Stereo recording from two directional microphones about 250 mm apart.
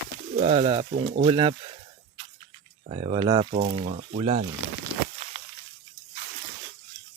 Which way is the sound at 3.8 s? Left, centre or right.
Right.